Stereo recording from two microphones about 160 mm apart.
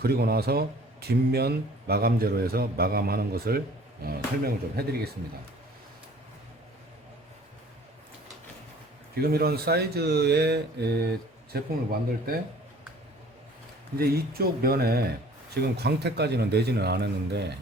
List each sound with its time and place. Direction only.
0.0 s a man's voice: 75° right (ahead or behind)
9.2 s a man's voice: 75° right (ahead or behind); by 10.8 s 90° right
11.5 s a man's voice: 70° right (ahead or behind)
14.1 s a man's voice: 70° right (ahead or behind)
15.5 s a man's voice: 90° right